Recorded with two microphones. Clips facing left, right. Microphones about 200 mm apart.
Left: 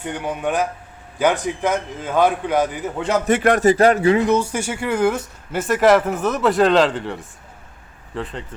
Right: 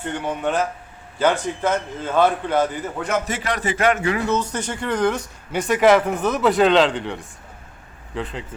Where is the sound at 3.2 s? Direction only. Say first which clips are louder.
Left 10 dB; 55° left (ahead or behind); by 4.2 s 30° left (ahead or behind).